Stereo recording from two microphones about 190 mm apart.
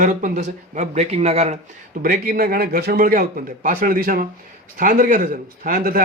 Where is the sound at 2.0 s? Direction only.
50° right (ahead or behind).